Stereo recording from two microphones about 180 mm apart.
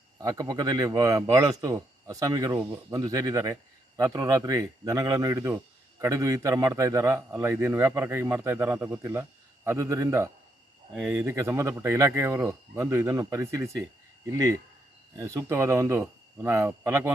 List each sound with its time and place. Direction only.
0.2 s a man's voice: 20° right (ahead or behind)